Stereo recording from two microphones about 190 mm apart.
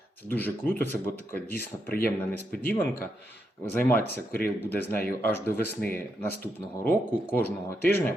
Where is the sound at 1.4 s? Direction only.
50° left (ahead or behind).